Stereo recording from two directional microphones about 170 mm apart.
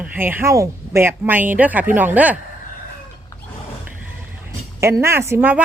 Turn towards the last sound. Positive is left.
turn(degrees=-10)  # may be behind; listen again after turning